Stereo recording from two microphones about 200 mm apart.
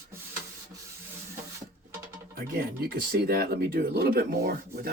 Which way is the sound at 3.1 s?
50° right (ahead or behind).